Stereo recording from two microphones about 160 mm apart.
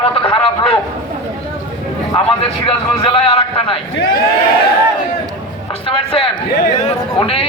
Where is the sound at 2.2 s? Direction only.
35° left (ahead or behind).